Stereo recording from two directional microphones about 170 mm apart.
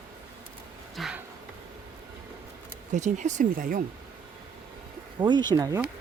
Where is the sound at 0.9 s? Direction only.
5° right (ahead or behind).